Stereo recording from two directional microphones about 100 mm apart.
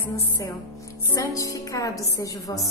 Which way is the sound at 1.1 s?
35° left (ahead or behind).